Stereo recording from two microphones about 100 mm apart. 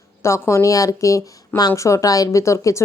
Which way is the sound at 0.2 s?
30° left (ahead or behind).